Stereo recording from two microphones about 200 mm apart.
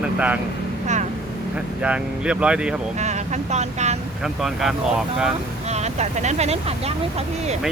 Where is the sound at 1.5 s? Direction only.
5° right (ahead or behind).